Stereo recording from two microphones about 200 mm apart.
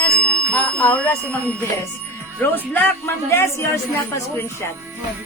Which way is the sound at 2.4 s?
10° left (ahead or behind).